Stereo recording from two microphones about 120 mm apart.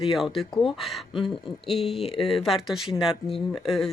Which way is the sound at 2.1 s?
50° left (ahead or behind).